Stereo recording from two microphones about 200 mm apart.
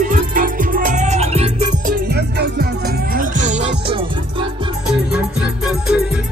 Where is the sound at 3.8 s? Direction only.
25° right (ahead or behind).